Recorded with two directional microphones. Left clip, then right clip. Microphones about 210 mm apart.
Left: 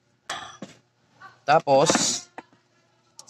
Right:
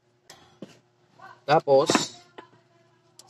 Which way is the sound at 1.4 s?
50° left (ahead or behind).